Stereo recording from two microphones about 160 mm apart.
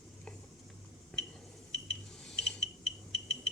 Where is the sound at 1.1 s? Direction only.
5° left (ahead or behind).